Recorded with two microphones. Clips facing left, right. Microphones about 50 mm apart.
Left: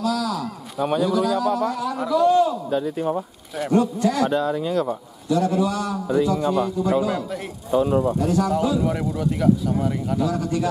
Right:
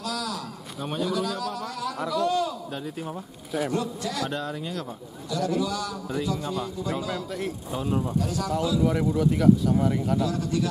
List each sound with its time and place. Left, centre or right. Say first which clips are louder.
0.0 s a man's voice: left 8 dB; centre
3.7 s a man's voice: left 9 dB; left
4.3 s speech: left 9 dB; centre
5.3 s a man's voice: left 6 dB; left
6.9 s a man's voice: left 7 dB; left
7.2 s speech: left 4 dB; centre
7.9 s a man's voice: left 7 dB; left
8.8 s speech: even; centre
10.2 s a man's voice: left 4 dB; left